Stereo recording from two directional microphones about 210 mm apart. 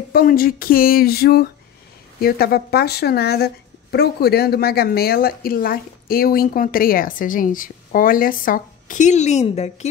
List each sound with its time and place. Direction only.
0.1 s speech: 45° left (ahead or behind)